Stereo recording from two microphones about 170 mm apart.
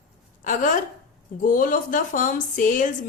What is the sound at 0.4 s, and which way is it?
A woman's voice, 50° left (ahead or behind).